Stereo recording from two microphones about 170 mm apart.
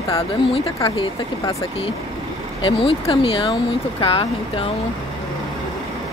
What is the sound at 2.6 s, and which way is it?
Speech, 30° left (ahead or behind).